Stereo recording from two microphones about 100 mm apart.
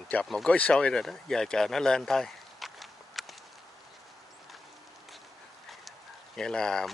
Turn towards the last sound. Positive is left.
turn(degrees=5)  # may be behind; listen again after turning